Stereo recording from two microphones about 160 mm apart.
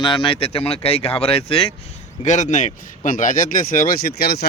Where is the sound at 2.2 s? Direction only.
50° left (ahead or behind).